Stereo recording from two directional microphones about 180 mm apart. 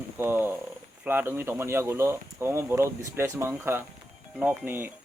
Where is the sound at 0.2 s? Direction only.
10° right (ahead or behind).